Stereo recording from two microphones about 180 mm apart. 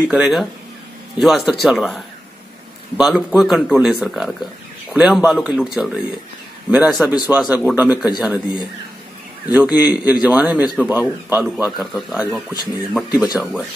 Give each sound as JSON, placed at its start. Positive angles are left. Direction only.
{"t": 0.1, "sound": "speech", "side_deg": -5}
{"t": 3.0, "sound": "speech", "side_deg": -5}
{"t": 7.9, "sound": "speech", "side_deg": 20}
{"t": 8.2, "sound": "speech", "side_deg": -10}